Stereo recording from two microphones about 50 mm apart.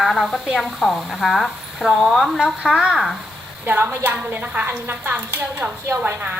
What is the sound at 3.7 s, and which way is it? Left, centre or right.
Speech, right.